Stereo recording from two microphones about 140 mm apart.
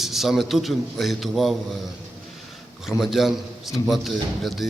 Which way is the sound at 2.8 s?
Centre (ahead or behind).